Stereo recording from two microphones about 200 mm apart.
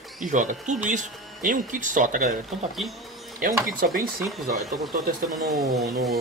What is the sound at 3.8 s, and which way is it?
Speech, 45° right (ahead or behind).